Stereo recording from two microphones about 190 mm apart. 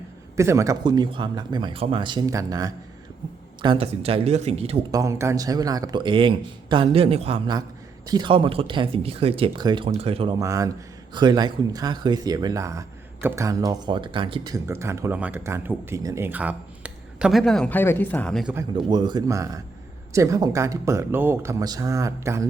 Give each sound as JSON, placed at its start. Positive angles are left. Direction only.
{"t": 0.3, "sound": "speech", "side_deg": -15}
{"t": 4.9, "sound": "speech", "side_deg": -15}
{"t": 10.3, "sound": "speech", "side_deg": -15}
{"t": 14.7, "sound": "speech", "side_deg": -15}
{"t": 18.7, "sound": "speech", "side_deg": -20}